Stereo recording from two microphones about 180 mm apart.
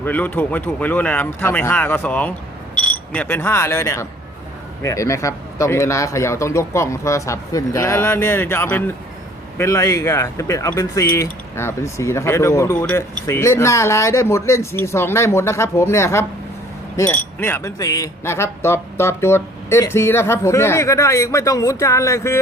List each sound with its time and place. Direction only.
0.0 s speech: 10° left (ahead or behind)